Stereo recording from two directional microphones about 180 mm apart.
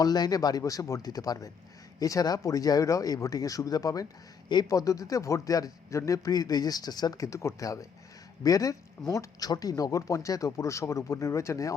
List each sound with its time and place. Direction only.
0.0 s speech: 20° left (ahead or behind)